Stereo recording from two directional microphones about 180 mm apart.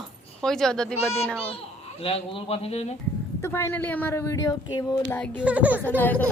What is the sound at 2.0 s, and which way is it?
Speech, 35° left (ahead or behind).